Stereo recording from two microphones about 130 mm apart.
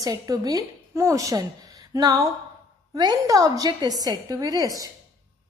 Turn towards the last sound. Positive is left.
turn(degrees=-30)  # may be behind; listen again after turning